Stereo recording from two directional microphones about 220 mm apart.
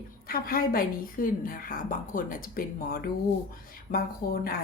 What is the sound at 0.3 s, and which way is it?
A woman's voice, 40° left (ahead or behind).